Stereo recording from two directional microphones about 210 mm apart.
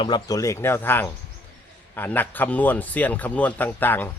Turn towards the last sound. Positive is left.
turn(degrees=10)  # may be behind; listen again after turning